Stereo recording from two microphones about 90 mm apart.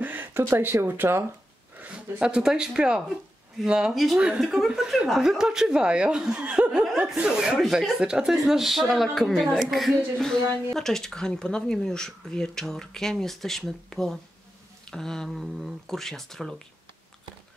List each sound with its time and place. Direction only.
0.0 s speech: 20° right (ahead or behind)
1.8 s speech: 10° right (ahead or behind)
3.9 s speech: centre (ahead or behind)